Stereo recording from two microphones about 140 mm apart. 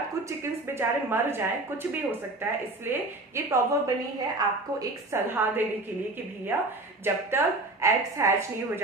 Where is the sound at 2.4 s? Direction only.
15° right (ahead or behind).